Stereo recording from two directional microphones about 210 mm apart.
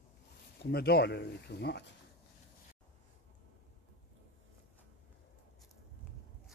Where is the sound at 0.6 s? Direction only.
50° left (ahead or behind).